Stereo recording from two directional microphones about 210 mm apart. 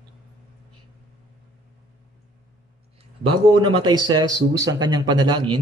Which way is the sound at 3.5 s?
20° right (ahead or behind).